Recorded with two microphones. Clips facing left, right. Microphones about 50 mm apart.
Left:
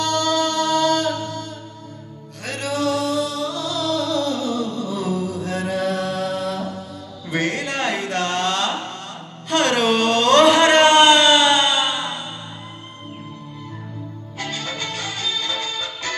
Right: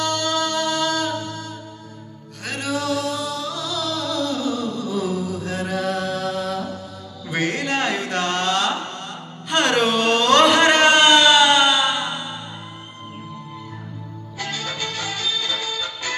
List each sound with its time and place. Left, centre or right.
0.1 s music: left
2.6 s music: left
7.3 s a sound: left
8.4 s mantra: left
9.7 s a sound: left
14.4 s music: left